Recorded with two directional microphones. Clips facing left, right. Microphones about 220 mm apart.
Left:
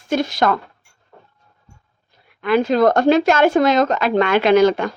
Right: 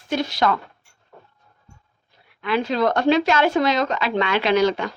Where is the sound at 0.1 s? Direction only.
45° left (ahead or behind).